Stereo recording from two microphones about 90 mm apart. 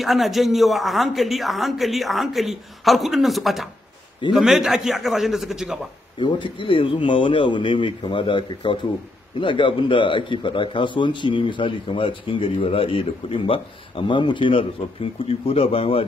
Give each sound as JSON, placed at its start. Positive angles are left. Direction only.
{"t": 0.0, "sound": "speech", "side_deg": 0}
{"t": 6.1, "sound": "a man's voice", "side_deg": 60}